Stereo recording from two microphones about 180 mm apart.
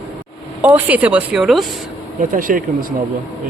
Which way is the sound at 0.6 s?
10° right (ahead or behind).